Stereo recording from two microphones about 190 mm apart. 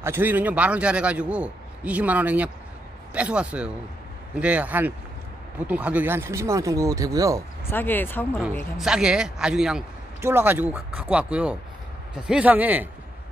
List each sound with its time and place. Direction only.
0.0 s a man's voice: 10° right (ahead or behind)
7.7 s speech: 10° left (ahead or behind)
8.7 s a man's voice: 5° right (ahead or behind)